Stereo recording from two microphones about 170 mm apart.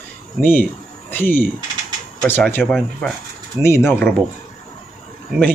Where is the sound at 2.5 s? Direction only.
10° left (ahead or behind).